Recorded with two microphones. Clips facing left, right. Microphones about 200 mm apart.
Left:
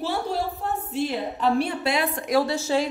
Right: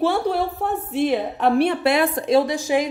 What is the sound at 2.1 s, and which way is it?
Speech, 25° right (ahead or behind).